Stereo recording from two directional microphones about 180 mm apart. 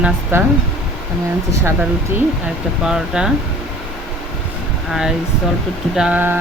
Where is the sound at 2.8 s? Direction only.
5° right (ahead or behind).